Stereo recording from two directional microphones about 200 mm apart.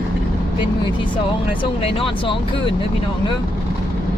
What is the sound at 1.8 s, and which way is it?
Speech, 25° left (ahead or behind).